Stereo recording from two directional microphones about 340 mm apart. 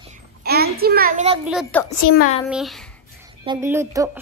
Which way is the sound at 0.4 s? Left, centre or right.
Right.